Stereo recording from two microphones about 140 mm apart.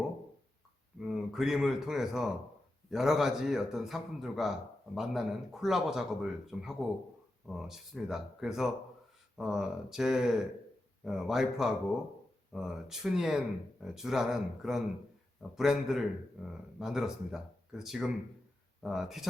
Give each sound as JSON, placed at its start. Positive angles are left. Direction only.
{"t": 1.0, "sound": "speech", "side_deg": 0}